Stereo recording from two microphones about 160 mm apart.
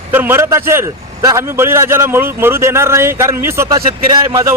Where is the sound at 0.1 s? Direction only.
15° right (ahead or behind).